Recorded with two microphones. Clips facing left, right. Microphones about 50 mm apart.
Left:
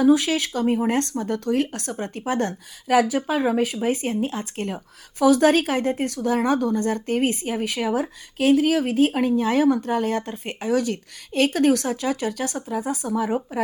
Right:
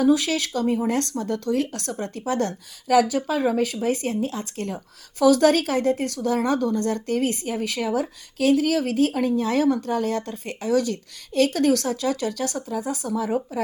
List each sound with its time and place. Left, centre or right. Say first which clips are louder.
0.0 s speech: left 2 dB; left